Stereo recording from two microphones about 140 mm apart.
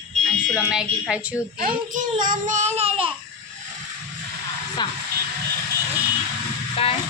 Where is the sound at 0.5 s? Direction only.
5° right (ahead or behind).